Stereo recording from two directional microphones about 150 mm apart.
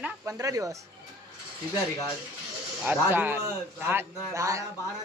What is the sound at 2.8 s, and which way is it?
Speech, 10° right (ahead or behind).